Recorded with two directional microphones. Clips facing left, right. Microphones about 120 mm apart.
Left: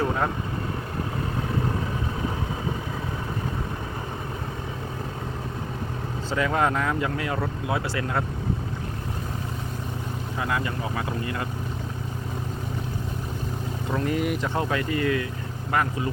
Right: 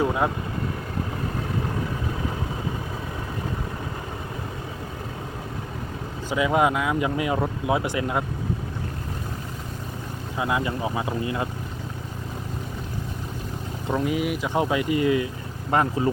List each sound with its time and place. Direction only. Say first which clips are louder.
0.0 s speech: right 2 dB; 10° right (ahead or behind)
6.3 s speech: right 3 dB; 15° right (ahead or behind)
10.3 s speech: right 3 dB; 20° right (ahead or behind)
13.8 s speech: right 1 dB; 10° right (ahead or behind)
14.5 s speech: right 3 dB; 15° right (ahead or behind)